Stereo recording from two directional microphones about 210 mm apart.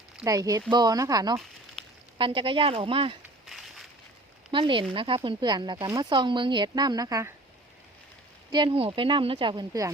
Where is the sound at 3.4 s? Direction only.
Centre (ahead or behind).